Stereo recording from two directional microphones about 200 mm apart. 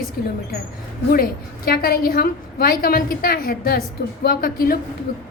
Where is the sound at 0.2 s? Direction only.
55° left (ahead or behind).